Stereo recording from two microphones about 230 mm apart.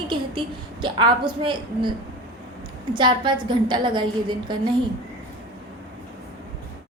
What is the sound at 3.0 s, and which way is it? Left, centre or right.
A woman's voice, right.